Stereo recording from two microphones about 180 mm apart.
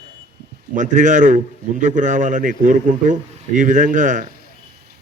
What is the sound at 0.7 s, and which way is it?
A man's voice, 45° right (ahead or behind).